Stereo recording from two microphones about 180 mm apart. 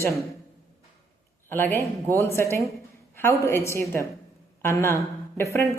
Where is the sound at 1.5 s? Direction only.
10° left (ahead or behind).